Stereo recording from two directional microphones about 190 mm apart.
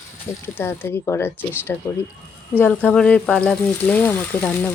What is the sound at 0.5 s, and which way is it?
Speech, 10° left (ahead or behind).